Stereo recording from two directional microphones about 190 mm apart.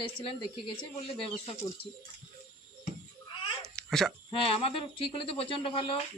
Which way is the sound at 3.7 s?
Centre (ahead or behind).